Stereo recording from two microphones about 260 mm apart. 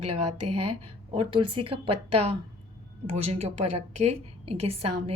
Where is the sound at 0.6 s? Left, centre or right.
Right.